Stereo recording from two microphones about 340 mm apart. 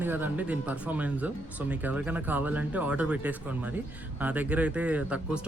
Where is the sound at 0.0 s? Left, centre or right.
Centre.